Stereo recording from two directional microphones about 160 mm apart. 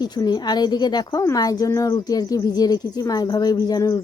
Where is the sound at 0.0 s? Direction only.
25° left (ahead or behind).